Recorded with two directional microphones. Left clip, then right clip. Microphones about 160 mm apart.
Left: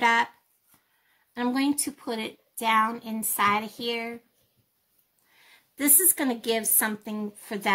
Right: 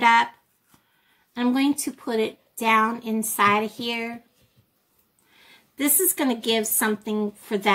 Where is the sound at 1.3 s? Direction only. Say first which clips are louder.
Right 4 dB; 35° left (ahead or behind).